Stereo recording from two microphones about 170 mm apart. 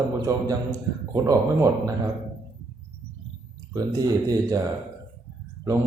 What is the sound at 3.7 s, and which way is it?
Speech, 20° right (ahead or behind).